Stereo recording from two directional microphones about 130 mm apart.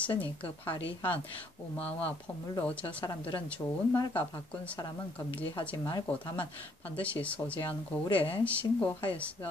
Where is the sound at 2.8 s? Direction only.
30° left (ahead or behind).